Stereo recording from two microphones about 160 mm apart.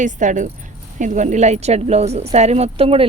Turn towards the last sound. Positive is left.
turn(degrees=-35)  # may be behind; listen again after turning